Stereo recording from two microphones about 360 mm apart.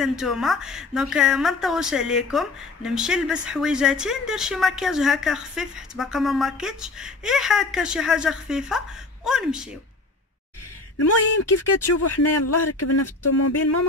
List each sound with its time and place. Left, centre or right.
0.0 s a woman's voice: centre
11.0 s speech: left